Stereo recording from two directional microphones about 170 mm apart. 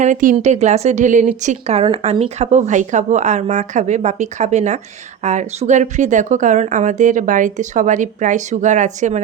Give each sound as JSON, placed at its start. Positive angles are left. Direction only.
{"t": 0.0, "sound": "speech", "side_deg": -50}